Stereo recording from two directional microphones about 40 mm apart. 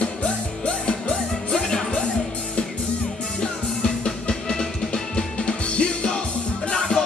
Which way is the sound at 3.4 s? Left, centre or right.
Left.